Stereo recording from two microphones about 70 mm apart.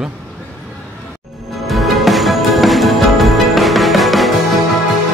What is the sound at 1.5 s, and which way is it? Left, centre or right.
Music, centre.